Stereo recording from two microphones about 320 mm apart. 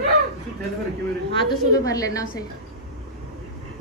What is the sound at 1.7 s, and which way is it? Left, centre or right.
Speech, centre.